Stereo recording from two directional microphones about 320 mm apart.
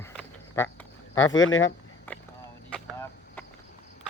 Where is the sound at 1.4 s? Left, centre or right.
Left.